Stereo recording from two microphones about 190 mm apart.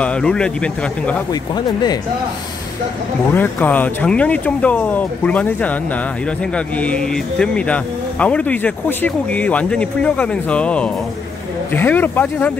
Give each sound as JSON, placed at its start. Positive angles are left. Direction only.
{"t": 0.0, "sound": "speech", "side_deg": 5}
{"t": 1.3, "sound": "speech", "side_deg": 20}
{"t": 3.3, "sound": "speech", "side_deg": 10}